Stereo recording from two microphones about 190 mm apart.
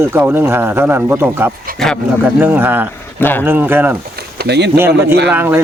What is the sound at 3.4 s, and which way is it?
Speech, 10° right (ahead or behind).